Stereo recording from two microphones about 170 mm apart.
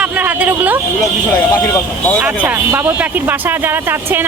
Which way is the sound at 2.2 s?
10° right (ahead or behind).